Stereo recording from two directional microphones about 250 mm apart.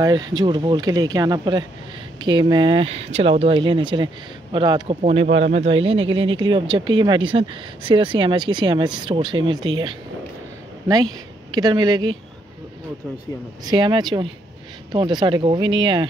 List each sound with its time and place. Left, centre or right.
0.3 s speech: centre
13.7 s speech: centre